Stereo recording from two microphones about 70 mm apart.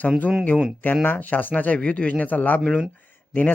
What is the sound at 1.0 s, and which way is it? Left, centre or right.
Speech, left.